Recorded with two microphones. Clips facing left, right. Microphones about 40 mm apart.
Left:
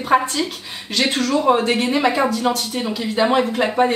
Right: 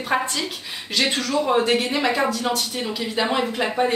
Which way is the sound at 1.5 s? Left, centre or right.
Centre.